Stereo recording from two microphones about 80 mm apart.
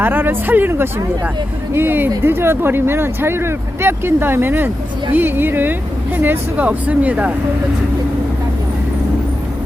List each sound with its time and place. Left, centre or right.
0.0 s speech: right